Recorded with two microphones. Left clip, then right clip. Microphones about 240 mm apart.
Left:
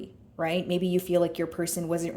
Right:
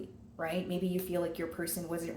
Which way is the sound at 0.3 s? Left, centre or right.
Left.